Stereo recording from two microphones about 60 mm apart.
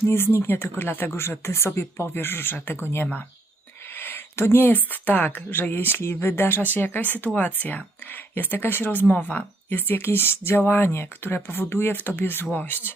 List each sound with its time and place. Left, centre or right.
0.0 s speech: left
1.1 s speech: left
6.7 s speech: left